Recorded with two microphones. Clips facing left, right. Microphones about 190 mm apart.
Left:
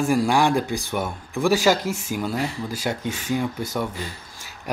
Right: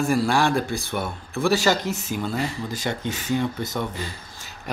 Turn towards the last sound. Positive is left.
turn(degrees=10)  # may be behind; listen again after turning